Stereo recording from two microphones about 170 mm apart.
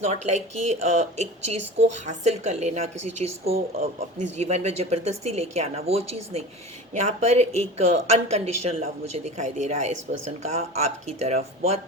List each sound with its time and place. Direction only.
0.0 s speech: 40° right (ahead or behind)